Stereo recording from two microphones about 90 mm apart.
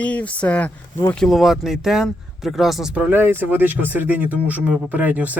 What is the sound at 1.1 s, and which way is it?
Speech, 5° left (ahead or behind).